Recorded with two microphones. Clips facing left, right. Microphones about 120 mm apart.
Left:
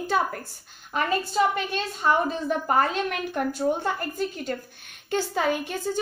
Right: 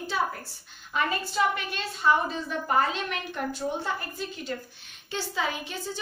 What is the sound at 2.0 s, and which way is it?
A woman's voice, 45° left (ahead or behind).